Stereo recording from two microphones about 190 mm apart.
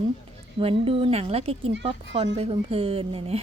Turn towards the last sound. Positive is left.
turn(degrees=-30)  # may be behind; listen again after turning